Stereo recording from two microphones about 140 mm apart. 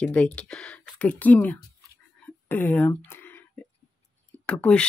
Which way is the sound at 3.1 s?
15° left (ahead or behind).